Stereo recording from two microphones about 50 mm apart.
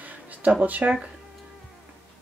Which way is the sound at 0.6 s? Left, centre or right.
Right.